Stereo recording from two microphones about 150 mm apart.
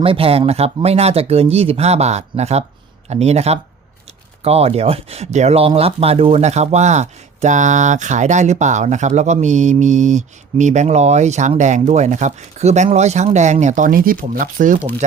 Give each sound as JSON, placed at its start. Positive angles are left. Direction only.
{"t": 0.0, "sound": "speech", "side_deg": -40}